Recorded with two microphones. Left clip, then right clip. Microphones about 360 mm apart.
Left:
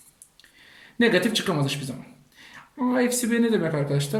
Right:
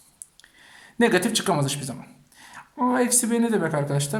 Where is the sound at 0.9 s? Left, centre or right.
Centre.